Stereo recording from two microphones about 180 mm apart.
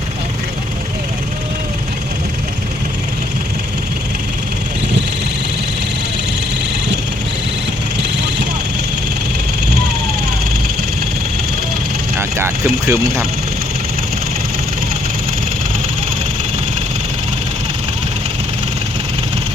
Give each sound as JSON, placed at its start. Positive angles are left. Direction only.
{"t": 12.4, "sound": "vehicle", "side_deg": -15}